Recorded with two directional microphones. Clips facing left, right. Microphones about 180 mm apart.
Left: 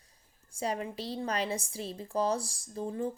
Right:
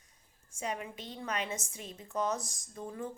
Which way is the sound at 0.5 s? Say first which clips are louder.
Left 4 dB; 35° left (ahead or behind).